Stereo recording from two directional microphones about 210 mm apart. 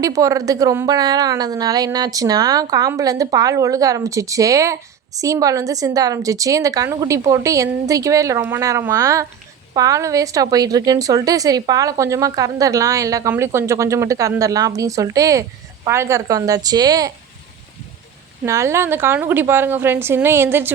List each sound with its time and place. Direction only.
0.0 s a woman's voice: 15° right (ahead or behind)
18.4 s a woman's voice: 15° right (ahead or behind)